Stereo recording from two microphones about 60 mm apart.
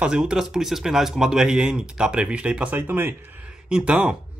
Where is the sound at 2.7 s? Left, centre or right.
Right.